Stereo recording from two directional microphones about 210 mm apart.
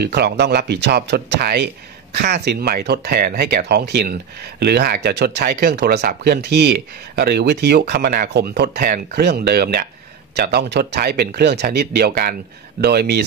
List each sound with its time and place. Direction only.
0.0 s speech: 50° right (ahead or behind)